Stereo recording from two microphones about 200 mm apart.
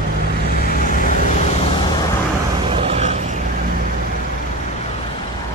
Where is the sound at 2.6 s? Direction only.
30° right (ahead or behind).